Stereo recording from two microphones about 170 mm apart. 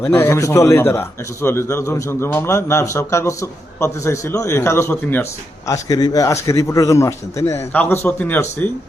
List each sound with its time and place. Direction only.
0.0 s a man's voice: 10° left (ahead or behind)